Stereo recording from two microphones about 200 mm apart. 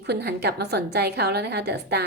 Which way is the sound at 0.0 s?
55° right (ahead or behind).